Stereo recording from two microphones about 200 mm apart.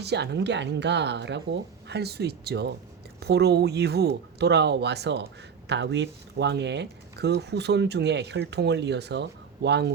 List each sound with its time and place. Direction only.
0.0 s speech: 55° right (ahead or behind)